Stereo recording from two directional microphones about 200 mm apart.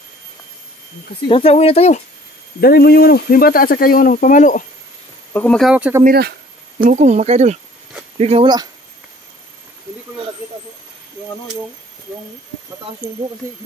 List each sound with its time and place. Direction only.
1.3 s speech: 30° left (ahead or behind)
2.6 s speech: 50° left (ahead or behind)
5.3 s speech: 5° left (ahead or behind)
6.0 s speech: 50° right (ahead or behind)
6.9 s speech: 35° right (ahead or behind)